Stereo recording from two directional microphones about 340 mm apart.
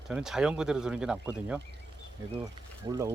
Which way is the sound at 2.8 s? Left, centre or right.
Centre.